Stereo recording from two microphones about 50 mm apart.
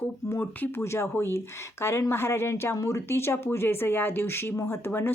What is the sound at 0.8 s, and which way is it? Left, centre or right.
Speech, left.